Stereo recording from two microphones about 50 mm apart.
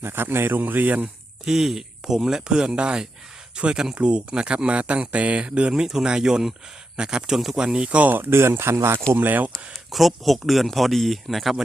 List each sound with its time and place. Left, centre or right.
0.0 s a man's voice: right
1.5 s speech: centre; by 5.8 s right
5.8 s speech: centre
7.9 s speech: right
8.1 s speech: right
9.1 s speech: right
9.9 s speech: centre